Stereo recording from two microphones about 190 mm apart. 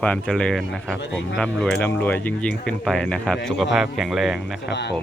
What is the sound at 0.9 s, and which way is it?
Speech, 65° left (ahead or behind).